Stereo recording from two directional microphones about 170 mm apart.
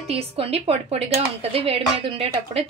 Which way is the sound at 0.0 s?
35° right (ahead or behind).